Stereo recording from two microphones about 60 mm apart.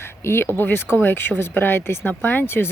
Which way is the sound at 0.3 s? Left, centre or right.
Left.